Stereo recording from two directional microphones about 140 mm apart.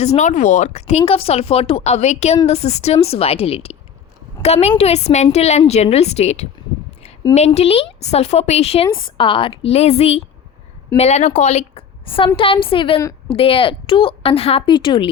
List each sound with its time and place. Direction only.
0.0 s a woman's voice: 55° left (ahead or behind); by 13.0 s 40° left (ahead or behind)
13.0 s a sound: 20° left (ahead or behind)
13.3 s a woman's voice: 40° left (ahead or behind)